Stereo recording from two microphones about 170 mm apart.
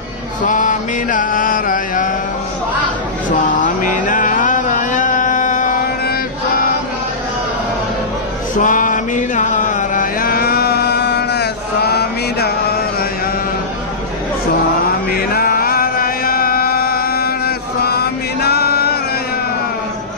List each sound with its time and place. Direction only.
0.5 s mantra: 50° left (ahead or behind)
3.5 s a sound: 50° left (ahead or behind)
8.5 s mantra: 50° left (ahead or behind); by 12.5 s 70° left (ahead or behind)
15.0 s chant: 60° left (ahead or behind)